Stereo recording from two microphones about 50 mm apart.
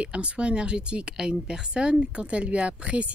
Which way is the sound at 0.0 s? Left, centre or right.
Right.